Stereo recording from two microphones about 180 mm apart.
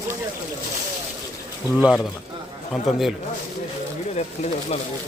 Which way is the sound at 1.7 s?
5° right (ahead or behind).